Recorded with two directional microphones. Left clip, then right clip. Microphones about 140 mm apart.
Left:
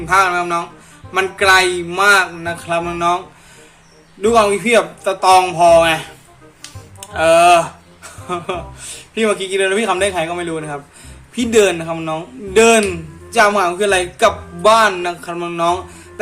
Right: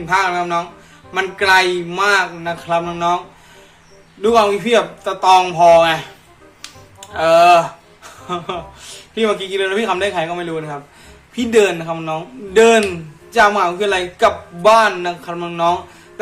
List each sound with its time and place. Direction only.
0.0 s speech: 30° left (ahead or behind)
4.2 s speech: 25° left (ahead or behind)
7.0 s a sound: 30° left (ahead or behind)
9.1 s speech: 25° left (ahead or behind)